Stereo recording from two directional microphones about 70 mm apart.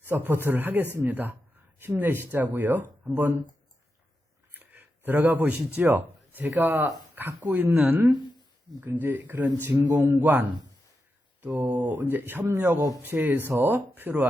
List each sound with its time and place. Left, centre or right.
0.0 s a man's voice: right
4.5 s speech: right
6.7 s speech: right
7.2 s a man's voice: right
8.8 s a man's voice: right
11.6 s a man's voice: right